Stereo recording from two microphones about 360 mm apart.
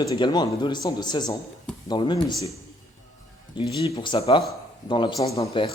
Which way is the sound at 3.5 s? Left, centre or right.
Centre.